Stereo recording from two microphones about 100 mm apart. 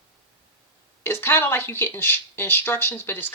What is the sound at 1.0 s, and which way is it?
Speech, 25° left (ahead or behind).